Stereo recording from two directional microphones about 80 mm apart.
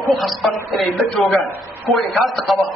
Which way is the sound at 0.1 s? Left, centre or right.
Centre.